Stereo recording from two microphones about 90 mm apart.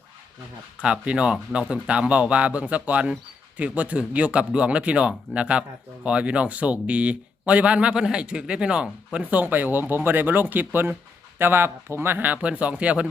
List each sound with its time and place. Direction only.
0.8 s speech: 10° right (ahead or behind)